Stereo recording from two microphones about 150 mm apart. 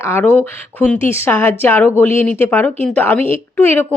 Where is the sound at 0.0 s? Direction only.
15° left (ahead or behind).